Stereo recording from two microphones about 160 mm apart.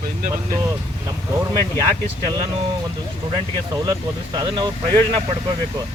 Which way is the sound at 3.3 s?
30° right (ahead or behind).